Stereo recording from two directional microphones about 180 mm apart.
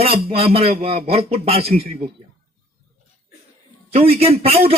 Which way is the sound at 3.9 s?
35° right (ahead or behind).